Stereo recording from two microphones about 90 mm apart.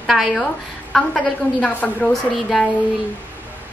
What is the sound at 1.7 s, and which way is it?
Speech, 15° left (ahead or behind).